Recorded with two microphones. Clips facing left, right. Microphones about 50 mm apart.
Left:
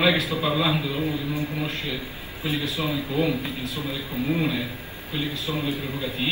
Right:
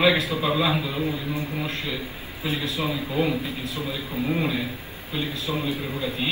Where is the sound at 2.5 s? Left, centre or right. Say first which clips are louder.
Even; right.